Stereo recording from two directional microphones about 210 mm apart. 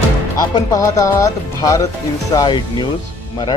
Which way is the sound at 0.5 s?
15° left (ahead or behind).